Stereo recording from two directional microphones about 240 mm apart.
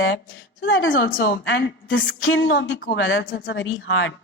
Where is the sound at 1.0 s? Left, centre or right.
Left.